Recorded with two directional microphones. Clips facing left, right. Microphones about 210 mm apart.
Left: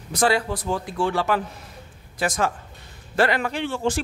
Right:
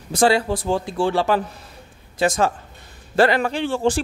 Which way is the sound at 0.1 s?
30° right (ahead or behind).